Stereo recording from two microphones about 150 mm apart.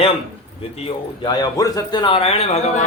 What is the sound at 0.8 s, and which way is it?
Speech, 30° left (ahead or behind).